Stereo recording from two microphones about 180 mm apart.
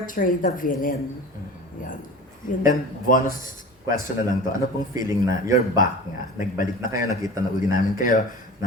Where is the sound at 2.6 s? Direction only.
50° left (ahead or behind).